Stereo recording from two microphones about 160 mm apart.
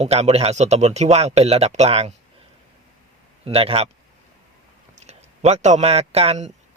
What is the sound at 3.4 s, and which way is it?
Speech, 35° right (ahead or behind).